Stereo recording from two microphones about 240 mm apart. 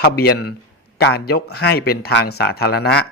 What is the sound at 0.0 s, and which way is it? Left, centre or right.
A man's voice, left.